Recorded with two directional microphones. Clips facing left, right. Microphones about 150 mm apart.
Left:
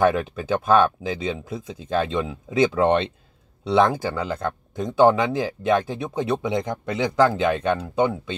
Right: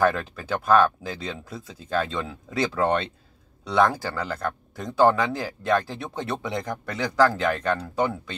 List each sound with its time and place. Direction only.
0.0 s speech: 20° left (ahead or behind)